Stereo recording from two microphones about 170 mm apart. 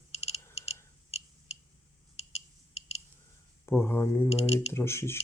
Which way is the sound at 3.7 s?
15° left (ahead or behind).